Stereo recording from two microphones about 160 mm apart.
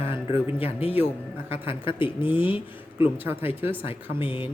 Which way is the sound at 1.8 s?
30° left (ahead or behind).